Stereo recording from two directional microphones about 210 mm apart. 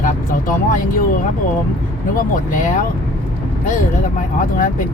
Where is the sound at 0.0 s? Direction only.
40° left (ahead or behind).